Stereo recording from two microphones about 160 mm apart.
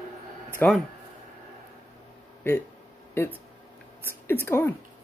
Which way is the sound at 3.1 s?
15° left (ahead or behind).